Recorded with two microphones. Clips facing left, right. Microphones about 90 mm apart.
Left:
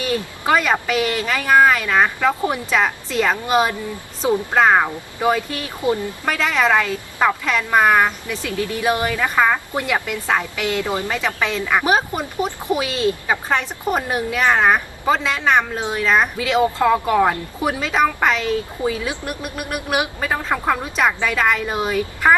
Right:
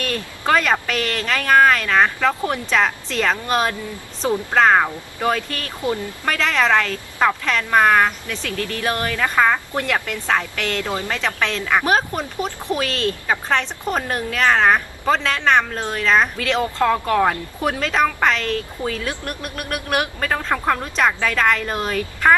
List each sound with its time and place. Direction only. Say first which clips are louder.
0.0 s a woman's voice: left 2 dB; 10° left (ahead or behind)